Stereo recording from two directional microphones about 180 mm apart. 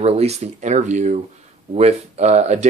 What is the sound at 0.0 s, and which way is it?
Speech, 35° right (ahead or behind).